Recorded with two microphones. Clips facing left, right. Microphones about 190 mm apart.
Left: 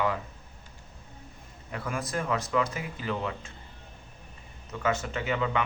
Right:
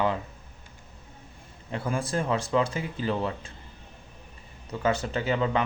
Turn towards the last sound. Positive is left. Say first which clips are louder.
# right 3 dB
turn(degrees=-35)  # may be behind; listen again after turning